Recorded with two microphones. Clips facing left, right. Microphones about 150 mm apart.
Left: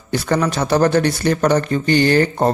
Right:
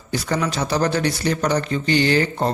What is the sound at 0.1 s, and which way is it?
Speech, 55° left (ahead or behind).